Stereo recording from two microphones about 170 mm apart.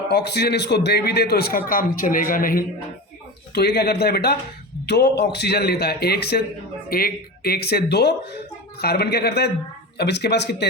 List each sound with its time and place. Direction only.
0.1 s a man's voice: 75° left (ahead or behind); by 2.6 s 55° left (ahead or behind)
3.5 s a man's voice: 70° left (ahead or behind)